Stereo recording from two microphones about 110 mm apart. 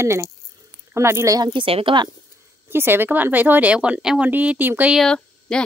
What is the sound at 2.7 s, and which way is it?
A woman's voice, 20° right (ahead or behind).